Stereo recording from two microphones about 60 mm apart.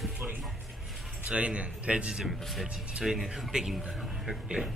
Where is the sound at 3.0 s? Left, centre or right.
Centre.